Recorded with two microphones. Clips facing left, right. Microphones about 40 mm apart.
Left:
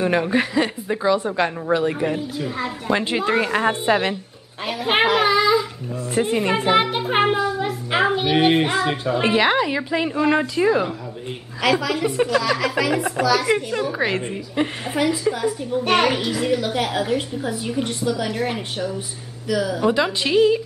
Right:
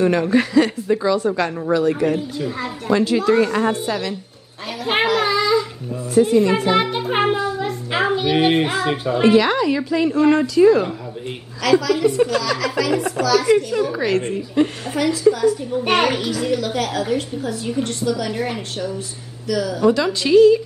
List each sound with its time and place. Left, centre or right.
0.0 s a woman's voice: centre
2.0 s a child's voice: centre
2.9 s a woman's voice: left
4.8 s a child's voice: centre
6.1 s speech: left
6.7 s a child's voice: centre
9.2 s a woman's voice: left
15.8 s a child's voice: centre
16.3 s a child's voice: centre